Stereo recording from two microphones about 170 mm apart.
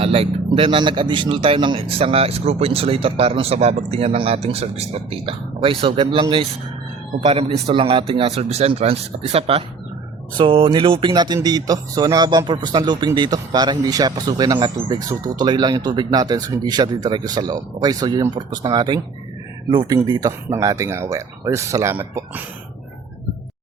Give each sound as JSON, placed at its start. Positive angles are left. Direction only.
{"t": 0.0, "sound": "speech", "side_deg": -35}